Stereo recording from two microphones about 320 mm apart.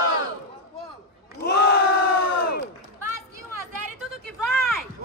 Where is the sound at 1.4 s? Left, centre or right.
Left.